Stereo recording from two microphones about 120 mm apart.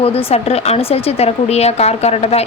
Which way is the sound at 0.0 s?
55° left (ahead or behind).